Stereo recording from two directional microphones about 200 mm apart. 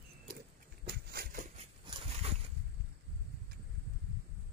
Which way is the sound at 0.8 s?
50° right (ahead or behind).